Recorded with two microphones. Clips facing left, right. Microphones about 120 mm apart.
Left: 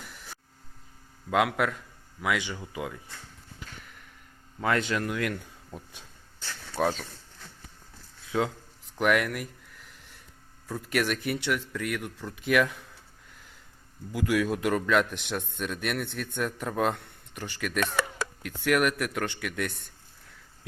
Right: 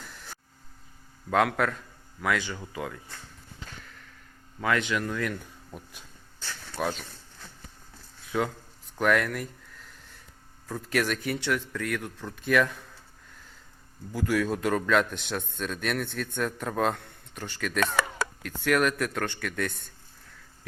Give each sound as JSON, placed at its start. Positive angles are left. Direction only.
{"t": 1.3, "sound": "speech", "side_deg": 10}
{"t": 4.6, "sound": "speech", "side_deg": 35}
{"t": 6.4, "sound": "a sound", "side_deg": 30}
{"t": 8.3, "sound": "speech", "side_deg": 20}
{"t": 14.1, "sound": "speech", "side_deg": 10}